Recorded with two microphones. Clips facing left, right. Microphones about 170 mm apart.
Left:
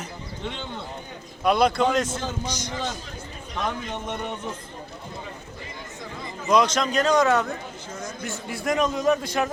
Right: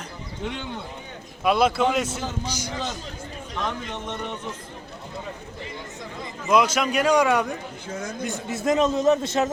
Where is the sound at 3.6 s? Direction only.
10° left (ahead or behind).